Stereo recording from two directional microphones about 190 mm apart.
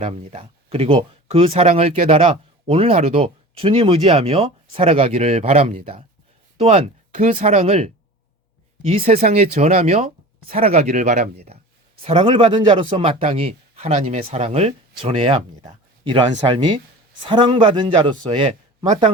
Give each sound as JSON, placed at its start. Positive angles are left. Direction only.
{"t": 0.0, "sound": "speech", "side_deg": -35}
{"t": 8.9, "sound": "speech", "side_deg": -35}
{"t": 12.0, "sound": "a man's voice", "side_deg": -30}